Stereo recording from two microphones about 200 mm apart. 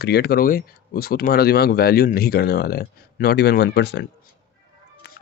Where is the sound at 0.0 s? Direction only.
55° left (ahead or behind).